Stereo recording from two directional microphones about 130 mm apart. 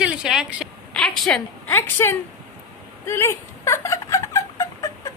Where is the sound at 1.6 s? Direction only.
15° left (ahead or behind).